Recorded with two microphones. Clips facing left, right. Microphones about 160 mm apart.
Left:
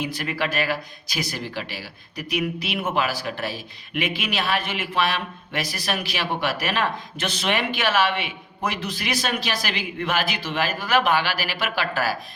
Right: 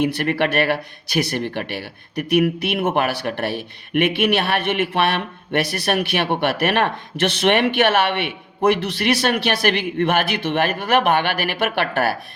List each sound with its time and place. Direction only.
0.0 s speech: 60° right (ahead or behind)